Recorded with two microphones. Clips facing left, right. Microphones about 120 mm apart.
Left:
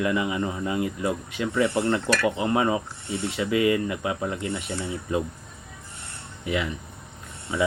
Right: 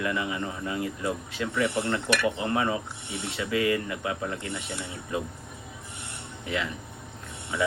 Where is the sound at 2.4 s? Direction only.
20° left (ahead or behind).